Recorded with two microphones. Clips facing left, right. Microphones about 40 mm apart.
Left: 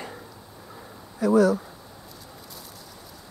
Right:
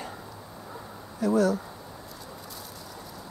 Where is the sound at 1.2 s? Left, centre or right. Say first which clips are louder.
Left 4 dB; left.